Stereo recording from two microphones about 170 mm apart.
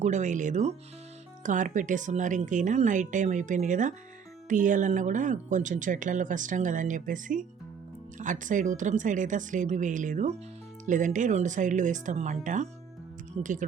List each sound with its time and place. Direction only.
0.0 s speech: 45° right (ahead or behind)